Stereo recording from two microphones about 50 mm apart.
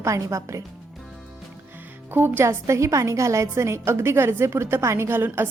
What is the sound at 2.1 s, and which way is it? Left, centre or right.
Speech, right.